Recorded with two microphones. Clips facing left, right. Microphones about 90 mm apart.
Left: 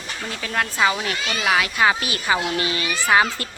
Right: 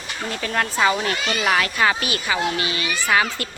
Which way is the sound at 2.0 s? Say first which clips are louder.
Even; 30° left (ahead or behind).